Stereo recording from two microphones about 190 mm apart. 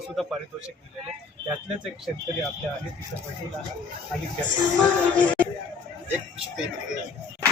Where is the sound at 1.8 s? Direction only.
Centre (ahead or behind).